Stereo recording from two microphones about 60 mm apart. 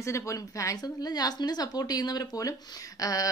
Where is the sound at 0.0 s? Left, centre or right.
Left.